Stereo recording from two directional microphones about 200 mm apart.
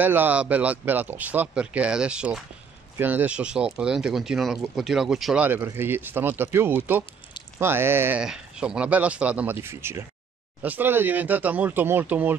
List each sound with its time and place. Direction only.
0.0 s speech: 10° right (ahead or behind)